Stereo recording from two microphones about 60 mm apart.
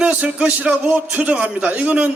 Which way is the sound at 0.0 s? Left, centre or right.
Centre.